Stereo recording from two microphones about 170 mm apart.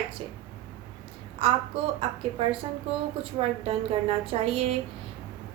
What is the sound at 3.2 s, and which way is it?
A woman's voice, 35° right (ahead or behind).